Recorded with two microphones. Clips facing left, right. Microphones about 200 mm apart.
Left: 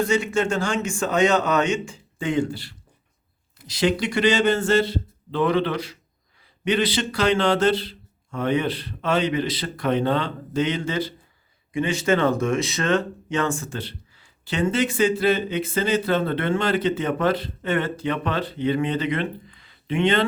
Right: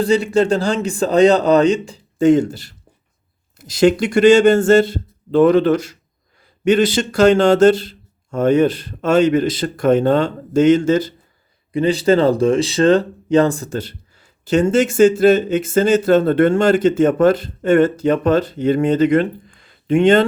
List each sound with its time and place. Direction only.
0.0 s a man's voice: 35° right (ahead or behind)